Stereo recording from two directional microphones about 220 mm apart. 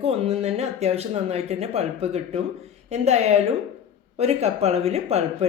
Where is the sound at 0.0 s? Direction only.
25° right (ahead or behind).